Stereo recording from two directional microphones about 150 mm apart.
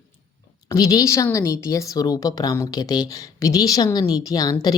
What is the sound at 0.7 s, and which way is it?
A woman's voice, 25° left (ahead or behind).